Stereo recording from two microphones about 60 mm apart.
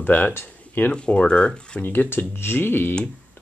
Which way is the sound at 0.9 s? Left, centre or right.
Centre.